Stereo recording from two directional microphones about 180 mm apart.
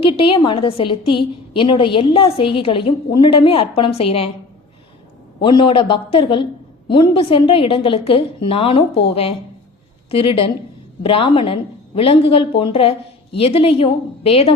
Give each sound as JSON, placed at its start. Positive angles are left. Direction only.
{"t": 0.2, "sound": "a woman's voice", "side_deg": 30}
{"t": 5.4, "sound": "a woman's voice", "side_deg": 25}
{"t": 10.1, "sound": "a woman's voice", "side_deg": 30}